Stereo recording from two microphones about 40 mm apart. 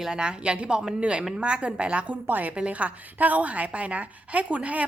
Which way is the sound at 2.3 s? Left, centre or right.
Right.